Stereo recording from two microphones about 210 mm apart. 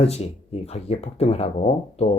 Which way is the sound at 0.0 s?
30° left (ahead or behind).